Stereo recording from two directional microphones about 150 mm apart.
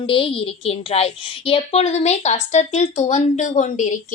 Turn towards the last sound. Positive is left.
turn(degrees=55)  # may be behind; listen again after turning